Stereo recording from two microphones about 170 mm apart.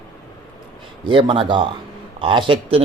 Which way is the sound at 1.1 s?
30° right (ahead or behind).